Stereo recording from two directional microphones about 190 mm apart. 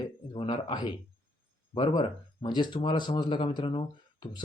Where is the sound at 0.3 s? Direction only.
25° left (ahead or behind).